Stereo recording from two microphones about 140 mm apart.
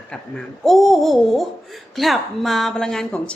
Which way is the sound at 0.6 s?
Centre (ahead or behind).